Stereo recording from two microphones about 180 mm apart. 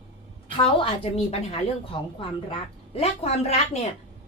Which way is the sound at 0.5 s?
30° left (ahead or behind).